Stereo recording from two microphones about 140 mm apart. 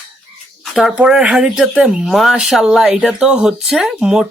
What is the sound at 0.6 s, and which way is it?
Speech, centre (ahead or behind).